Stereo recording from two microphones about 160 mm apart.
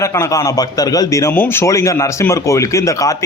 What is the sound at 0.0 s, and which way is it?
A man's voice, 20° left (ahead or behind).